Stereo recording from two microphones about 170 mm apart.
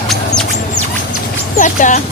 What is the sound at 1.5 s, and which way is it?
Speech, 50° left (ahead or behind).